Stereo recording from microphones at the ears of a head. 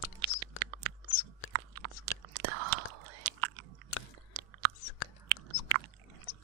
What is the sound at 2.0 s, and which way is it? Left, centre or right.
Chewing, right.